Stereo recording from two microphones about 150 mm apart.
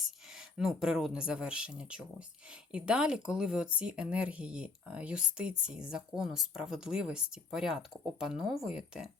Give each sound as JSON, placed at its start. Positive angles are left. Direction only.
{"t": 0.0, "sound": "speech", "side_deg": -5}